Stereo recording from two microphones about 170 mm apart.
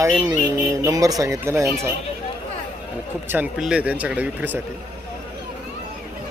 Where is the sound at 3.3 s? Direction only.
5° right (ahead or behind).